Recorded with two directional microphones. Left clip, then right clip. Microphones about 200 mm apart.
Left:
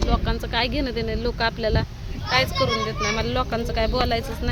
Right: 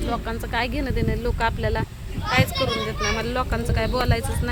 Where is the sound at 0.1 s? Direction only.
5° left (ahead or behind).